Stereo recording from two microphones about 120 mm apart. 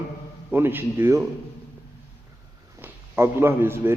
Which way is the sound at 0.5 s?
15° right (ahead or behind).